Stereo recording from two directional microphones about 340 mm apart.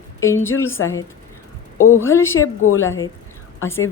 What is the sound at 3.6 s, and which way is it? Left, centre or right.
Speech, centre.